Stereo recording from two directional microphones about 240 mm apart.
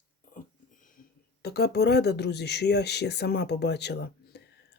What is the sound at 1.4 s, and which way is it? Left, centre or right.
Speech, left.